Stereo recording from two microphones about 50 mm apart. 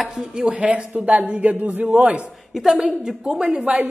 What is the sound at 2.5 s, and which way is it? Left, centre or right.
Speech, centre.